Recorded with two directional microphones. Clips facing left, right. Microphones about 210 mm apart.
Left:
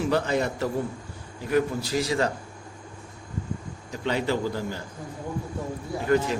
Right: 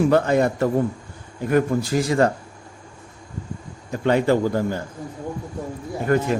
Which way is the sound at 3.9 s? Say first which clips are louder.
Right 8 dB; 50° right (ahead or behind).